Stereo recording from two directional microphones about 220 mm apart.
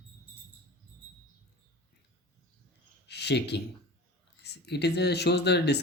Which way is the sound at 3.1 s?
50° left (ahead or behind).